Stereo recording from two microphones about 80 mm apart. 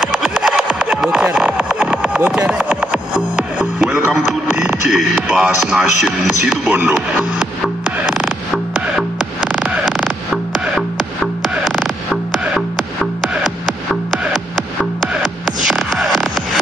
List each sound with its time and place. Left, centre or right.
0.0 s a sound: centre
4.8 s speech: centre
6.7 s speech: right
7.3 s music: centre
11.4 s music: centre